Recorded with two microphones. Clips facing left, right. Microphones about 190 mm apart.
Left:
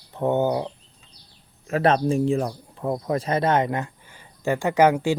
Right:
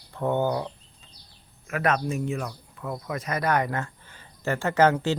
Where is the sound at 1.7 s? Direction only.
30° left (ahead or behind).